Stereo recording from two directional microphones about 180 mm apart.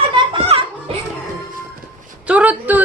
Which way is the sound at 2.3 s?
10° right (ahead or behind).